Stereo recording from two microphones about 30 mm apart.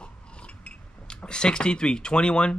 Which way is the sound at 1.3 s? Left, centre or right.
Left.